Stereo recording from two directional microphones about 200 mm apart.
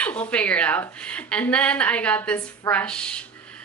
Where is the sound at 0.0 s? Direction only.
5° left (ahead or behind).